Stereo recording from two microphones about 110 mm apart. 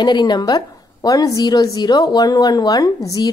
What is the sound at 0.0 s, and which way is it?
A woman's voice, 40° left (ahead or behind).